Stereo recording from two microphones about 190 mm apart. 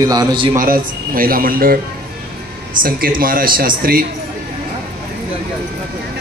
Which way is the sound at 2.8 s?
50° right (ahead or behind).